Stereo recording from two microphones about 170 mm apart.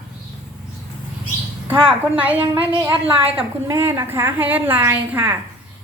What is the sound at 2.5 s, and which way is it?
Speech, 10° right (ahead or behind).